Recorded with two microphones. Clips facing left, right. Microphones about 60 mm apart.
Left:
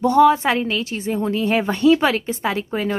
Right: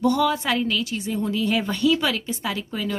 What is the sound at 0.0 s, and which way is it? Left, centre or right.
A woman's voice, left.